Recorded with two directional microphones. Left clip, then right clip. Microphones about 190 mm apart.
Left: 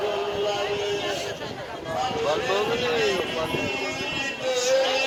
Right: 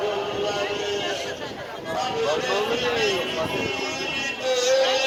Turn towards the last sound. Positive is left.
turn(degrees=-35)  # may be behind; listen again after turning